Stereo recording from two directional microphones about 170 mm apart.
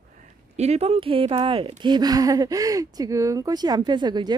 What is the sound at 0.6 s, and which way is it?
Speech, 40° right (ahead or behind).